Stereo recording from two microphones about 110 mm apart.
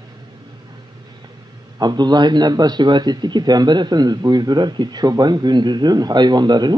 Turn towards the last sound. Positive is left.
turn(degrees=-40)  # may be behind; listen again after turning